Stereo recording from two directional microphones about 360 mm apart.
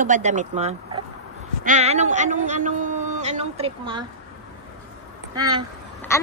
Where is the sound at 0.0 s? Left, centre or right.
Centre.